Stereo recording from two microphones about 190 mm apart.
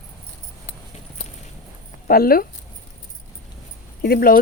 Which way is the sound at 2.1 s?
50° left (ahead or behind).